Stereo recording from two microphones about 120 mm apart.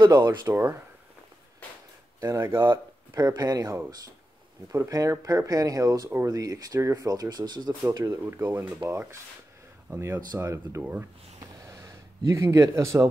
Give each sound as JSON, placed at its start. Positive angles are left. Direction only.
{"t": 0.0, "sound": "speech", "side_deg": -40}
{"t": 0.5, "sound": "speech", "side_deg": -20}
{"t": 2.1, "sound": "speech", "side_deg": -25}
{"t": 2.6, "sound": "speech", "side_deg": -40}
{"t": 4.7, "sound": "speech", "side_deg": -25}
{"t": 7.9, "sound": "speech", "side_deg": -25}
{"t": 11.6, "sound": "a sound", "side_deg": -30}
{"t": 12.3, "sound": "speech", "side_deg": -25}